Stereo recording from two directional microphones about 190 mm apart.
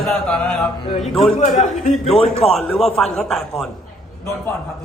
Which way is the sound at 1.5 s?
40° left (ahead or behind).